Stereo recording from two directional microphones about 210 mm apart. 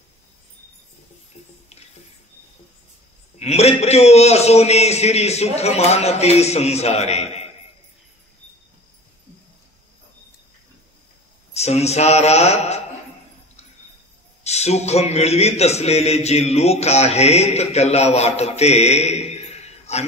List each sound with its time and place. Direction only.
3.3 s a man's voice: 30° left (ahead or behind)
11.5 s a man's voice: 30° left (ahead or behind)
14.4 s a man's voice: 30° left (ahead or behind)